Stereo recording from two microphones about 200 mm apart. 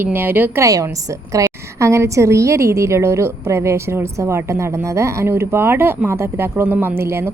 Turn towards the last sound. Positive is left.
turn(degrees=-10)  # may be behind; listen again after turning